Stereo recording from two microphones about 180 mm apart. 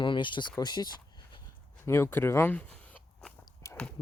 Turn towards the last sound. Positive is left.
turn(degrees=15)  # may be behind; listen again after turning